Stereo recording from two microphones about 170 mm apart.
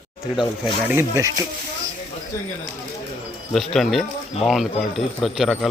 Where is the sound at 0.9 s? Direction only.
15° right (ahead or behind).